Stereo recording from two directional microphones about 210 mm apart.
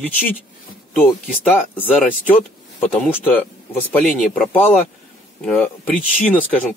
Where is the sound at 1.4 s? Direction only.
10° left (ahead or behind).